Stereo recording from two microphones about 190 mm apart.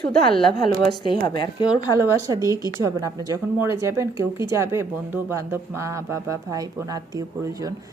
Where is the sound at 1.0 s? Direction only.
25° left (ahead or behind).